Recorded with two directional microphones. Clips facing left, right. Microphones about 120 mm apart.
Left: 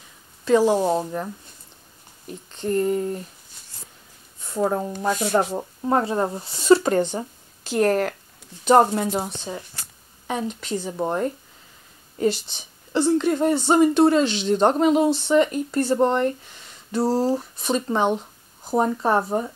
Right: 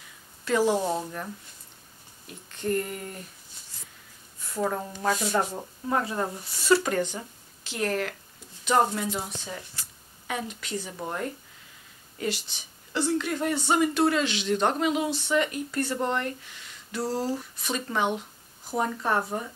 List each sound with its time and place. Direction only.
0.5 s speech: 20° left (ahead or behind)
2.5 s speech: 25° left (ahead or behind)
4.4 s a sound: 30° left (ahead or behind)
5.4 s speech: 25° left (ahead or behind); by 9.2 s 45° left (ahead or behind)
10.2 s speech: 30° left (ahead or behind)
12.9 s speech: 30° left (ahead or behind)